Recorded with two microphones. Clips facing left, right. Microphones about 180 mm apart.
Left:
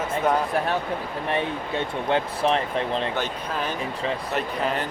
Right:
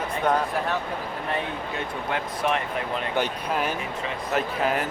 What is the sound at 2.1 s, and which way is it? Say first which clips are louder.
Speech: left 4 dB; 30° left (ahead or behind).